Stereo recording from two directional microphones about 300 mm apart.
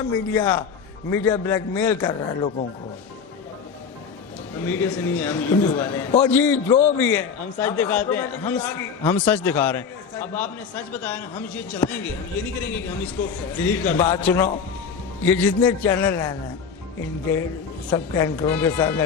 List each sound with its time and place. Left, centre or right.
0.0 s a man's voice: centre
4.5 s a man's voice: centre
17.8 s a man's voice: centre